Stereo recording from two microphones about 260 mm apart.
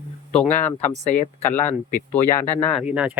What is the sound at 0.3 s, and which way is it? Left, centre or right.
Speech, centre.